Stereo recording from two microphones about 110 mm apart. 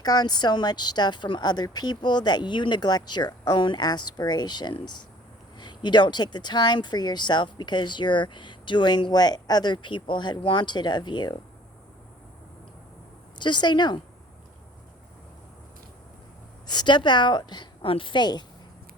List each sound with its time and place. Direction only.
0.0 s speech: 35° left (ahead or behind)
13.4 s speech: 45° left (ahead or behind)
16.6 s speech: 45° left (ahead or behind)